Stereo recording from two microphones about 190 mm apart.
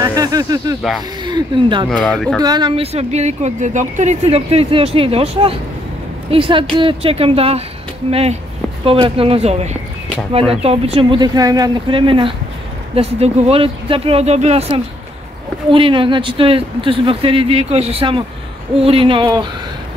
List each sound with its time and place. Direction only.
0.0 s speech: 20° right (ahead or behind)
1.9 s speech: 5° left (ahead or behind)
2.4 s speech: 20° right (ahead or behind)